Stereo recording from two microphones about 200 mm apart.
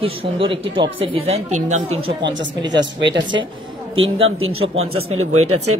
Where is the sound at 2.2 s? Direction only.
65° right (ahead or behind).